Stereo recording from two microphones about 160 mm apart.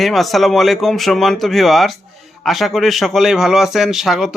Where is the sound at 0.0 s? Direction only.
Centre (ahead or behind).